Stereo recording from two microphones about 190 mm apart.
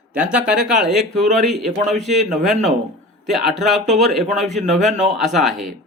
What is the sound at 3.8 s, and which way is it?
Speech, 35° right (ahead or behind).